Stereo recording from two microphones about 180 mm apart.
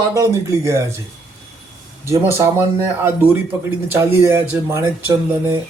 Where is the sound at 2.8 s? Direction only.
10° right (ahead or behind).